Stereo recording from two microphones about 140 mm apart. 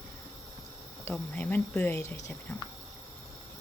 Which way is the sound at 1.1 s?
10° left (ahead or behind).